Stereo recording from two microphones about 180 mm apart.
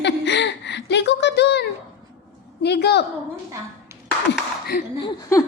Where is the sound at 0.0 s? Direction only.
75° left (ahead or behind).